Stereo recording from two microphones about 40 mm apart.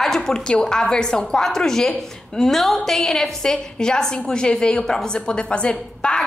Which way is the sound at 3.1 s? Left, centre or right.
Centre.